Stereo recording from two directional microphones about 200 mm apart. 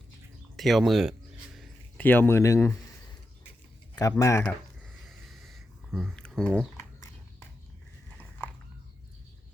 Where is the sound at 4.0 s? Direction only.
15° left (ahead or behind).